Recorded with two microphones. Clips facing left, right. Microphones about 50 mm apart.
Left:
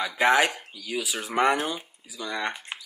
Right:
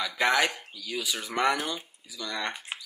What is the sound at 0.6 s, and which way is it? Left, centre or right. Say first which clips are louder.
Speech: left 3 dB; centre.